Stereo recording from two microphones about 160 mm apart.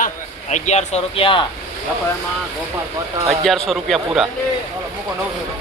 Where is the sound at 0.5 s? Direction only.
45° left (ahead or behind).